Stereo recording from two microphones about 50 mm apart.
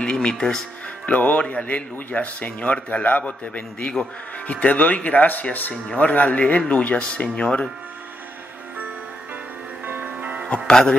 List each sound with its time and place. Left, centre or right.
0.0 s music: centre
1.0 s a man's voice: left
9.8 s music: right
10.7 s music: centre